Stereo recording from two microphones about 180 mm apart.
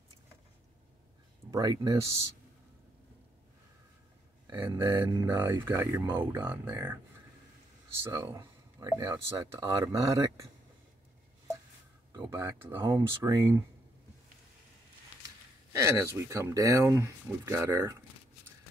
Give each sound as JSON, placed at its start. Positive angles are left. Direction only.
{"t": 1.5, "sound": "speech", "side_deg": -20}
{"t": 4.5, "sound": "speech", "side_deg": -15}
{"t": 12.1, "sound": "speech", "side_deg": -20}
{"t": 15.7, "sound": "speech", "side_deg": -15}